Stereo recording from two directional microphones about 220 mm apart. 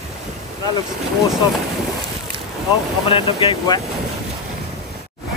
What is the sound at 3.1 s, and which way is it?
Speech, 25° left (ahead or behind).